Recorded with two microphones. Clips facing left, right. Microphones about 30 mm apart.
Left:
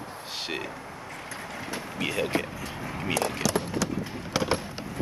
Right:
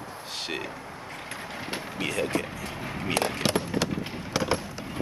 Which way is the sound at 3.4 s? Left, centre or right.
Right.